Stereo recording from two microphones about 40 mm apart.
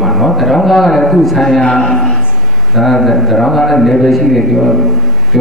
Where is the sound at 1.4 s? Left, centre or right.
Centre.